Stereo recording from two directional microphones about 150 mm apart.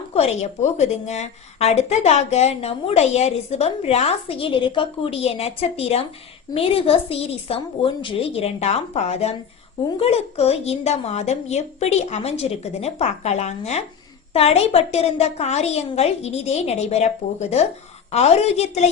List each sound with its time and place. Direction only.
0.1 s a woman's voice: 45° left (ahead or behind)